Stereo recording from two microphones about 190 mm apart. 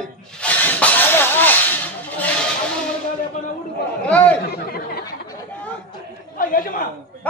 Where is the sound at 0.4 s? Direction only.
5° left (ahead or behind).